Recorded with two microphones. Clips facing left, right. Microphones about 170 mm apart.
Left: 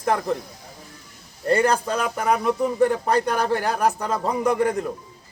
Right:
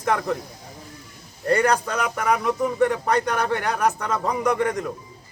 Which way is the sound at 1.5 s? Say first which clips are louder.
Left 1 dB; 30° left (ahead or behind).